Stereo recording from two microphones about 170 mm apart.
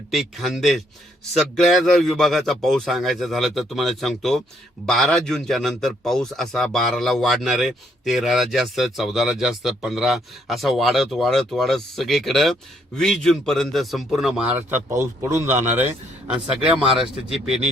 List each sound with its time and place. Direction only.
0.1 s a man's voice: centre (ahead or behind)
14.8 s a man's voice: 15° right (ahead or behind)